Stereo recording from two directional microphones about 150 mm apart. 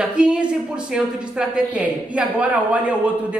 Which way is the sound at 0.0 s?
5° right (ahead or behind).